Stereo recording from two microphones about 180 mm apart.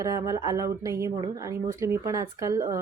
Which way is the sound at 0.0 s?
20° right (ahead or behind).